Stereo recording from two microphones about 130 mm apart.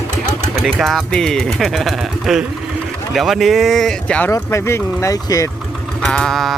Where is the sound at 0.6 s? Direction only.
Centre (ahead or behind).